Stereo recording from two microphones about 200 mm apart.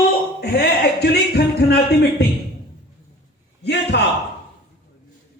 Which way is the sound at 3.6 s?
55° left (ahead or behind).